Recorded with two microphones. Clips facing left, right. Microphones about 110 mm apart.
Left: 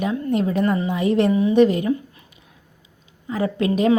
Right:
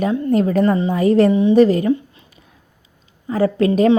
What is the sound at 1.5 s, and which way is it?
Speech, 35° right (ahead or behind).